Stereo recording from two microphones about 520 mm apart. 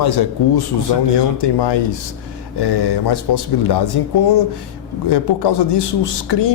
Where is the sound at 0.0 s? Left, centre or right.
Left.